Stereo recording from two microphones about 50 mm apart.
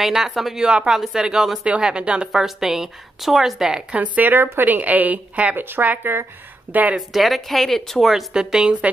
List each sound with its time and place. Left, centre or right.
0.0 s a woman's voice: centre
0.6 s a woman's voice: centre
0.9 s a woman's voice: centre
2.4 s a woman's voice: centre
3.9 s speech: right
4.3 s speech: right
5.6 s speech: right
7.1 s a woman's voice: centre
8.1 s a woman's voice: centre